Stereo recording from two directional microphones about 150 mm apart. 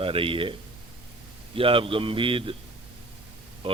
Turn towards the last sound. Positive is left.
turn(degrees=-40)  # may be behind; listen again after turning